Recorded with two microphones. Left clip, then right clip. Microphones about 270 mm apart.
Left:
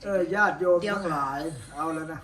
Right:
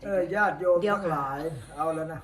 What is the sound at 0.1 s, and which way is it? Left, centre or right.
Speech, centre.